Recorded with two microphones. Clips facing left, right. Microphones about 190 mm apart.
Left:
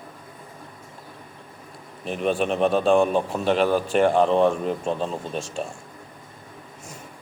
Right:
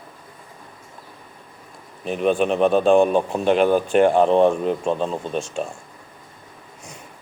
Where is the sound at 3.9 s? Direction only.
Centre (ahead or behind).